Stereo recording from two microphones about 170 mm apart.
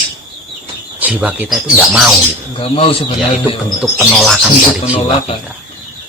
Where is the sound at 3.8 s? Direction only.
Centre (ahead or behind).